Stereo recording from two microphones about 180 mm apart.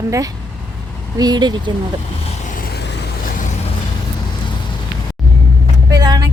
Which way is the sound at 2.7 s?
65° left (ahead or behind).